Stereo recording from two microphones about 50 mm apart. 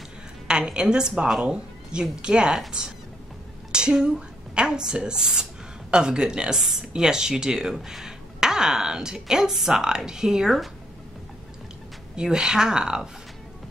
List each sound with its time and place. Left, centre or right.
0.5 s speech: centre
3.7 s a woman's voice: centre
6.6 s speech: centre
12.2 s speech: centre